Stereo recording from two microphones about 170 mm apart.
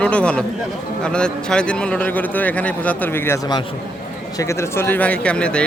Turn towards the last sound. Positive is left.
turn(degrees=5)  # may be behind; listen again after turning